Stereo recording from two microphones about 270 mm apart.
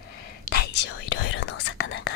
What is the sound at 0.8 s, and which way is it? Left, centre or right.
Whispering, left.